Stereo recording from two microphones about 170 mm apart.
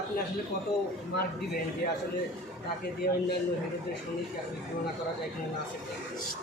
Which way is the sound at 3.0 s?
65° left (ahead or behind).